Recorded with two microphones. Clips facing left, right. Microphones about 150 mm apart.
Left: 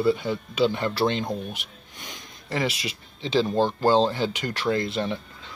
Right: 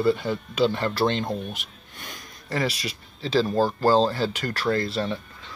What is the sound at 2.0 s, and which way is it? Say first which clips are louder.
Speech: right 1 dB; 20° left (ahead or behind).